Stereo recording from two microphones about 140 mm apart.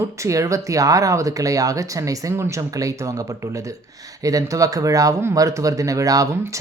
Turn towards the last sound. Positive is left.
turn(degrees=-25)  # may be behind; listen again after turning